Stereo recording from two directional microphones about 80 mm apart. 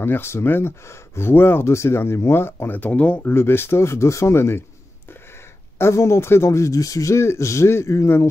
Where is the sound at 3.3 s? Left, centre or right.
Left.